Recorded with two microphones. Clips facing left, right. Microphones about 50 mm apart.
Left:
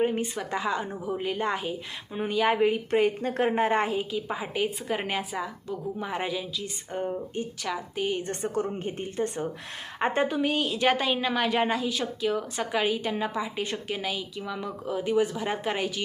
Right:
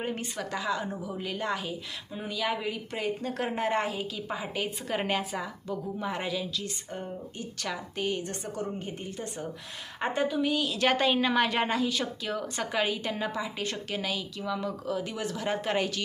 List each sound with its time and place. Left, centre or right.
0.0 s a woman's voice: centre
0.5 s a woman's voice: left
8.2 s a woman's voice: left
10.2 s a woman's voice: left
10.8 s a woman's voice: centre